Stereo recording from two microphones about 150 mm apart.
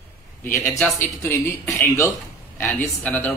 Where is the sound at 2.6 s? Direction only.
10° left (ahead or behind).